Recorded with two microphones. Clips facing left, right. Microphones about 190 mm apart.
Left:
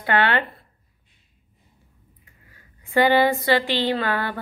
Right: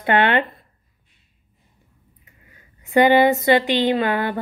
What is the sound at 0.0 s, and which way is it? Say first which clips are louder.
Speech: right 3 dB; 20° right (ahead or behind).